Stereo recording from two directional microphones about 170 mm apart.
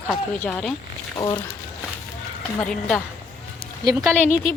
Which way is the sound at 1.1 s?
25° left (ahead or behind).